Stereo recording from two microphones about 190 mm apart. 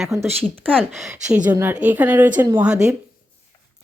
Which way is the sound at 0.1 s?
15° right (ahead or behind).